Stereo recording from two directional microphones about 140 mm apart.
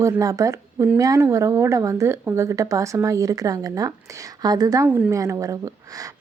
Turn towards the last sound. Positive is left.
turn(degrees=-25)  # may be behind; listen again after turning